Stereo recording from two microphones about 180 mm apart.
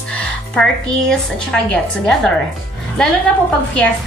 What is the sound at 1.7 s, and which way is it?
A woman's voice, 5° left (ahead or behind).